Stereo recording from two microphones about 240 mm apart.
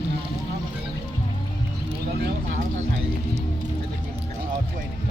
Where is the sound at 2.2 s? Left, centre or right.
Right.